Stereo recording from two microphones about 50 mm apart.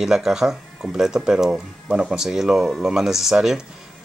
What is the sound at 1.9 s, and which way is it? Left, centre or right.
Speech, right.